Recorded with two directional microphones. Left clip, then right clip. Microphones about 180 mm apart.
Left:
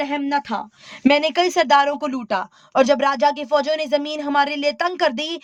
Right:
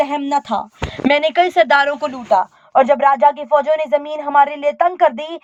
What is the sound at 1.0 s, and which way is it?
Speech, 40° left (ahead or behind).